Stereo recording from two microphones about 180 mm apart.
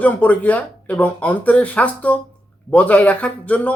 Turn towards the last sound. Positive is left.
turn(degrees=10)  # may be behind; listen again after turning